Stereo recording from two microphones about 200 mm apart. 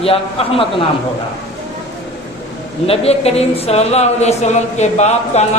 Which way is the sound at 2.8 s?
30° left (ahead or behind).